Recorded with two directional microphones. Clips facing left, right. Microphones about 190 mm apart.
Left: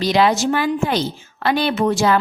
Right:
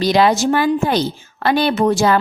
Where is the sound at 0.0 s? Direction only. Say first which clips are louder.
Right 2 dB; 40° right (ahead or behind).